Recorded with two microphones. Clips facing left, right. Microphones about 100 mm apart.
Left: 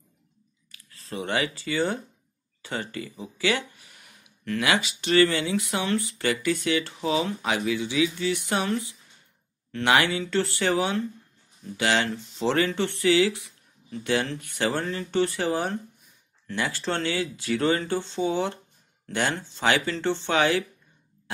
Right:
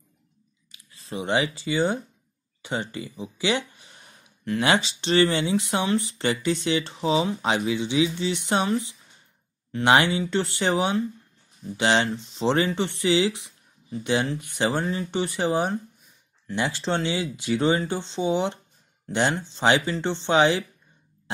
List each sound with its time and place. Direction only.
0.7 s speech: 20° right (ahead or behind)